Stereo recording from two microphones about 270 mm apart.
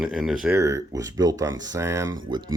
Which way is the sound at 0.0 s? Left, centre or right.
Centre.